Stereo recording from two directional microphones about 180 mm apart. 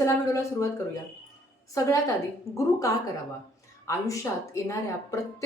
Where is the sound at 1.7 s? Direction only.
15° left (ahead or behind).